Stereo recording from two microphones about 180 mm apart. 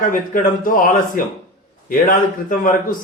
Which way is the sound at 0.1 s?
50° left (ahead or behind).